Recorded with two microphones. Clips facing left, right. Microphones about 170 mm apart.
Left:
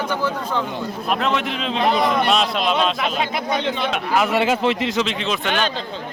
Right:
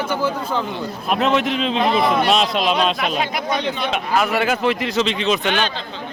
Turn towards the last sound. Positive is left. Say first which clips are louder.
# right 1 dB
turn(degrees=45)  # may be behind; listen again after turning